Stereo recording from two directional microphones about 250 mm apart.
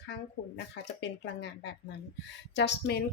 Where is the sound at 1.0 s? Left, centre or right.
Left.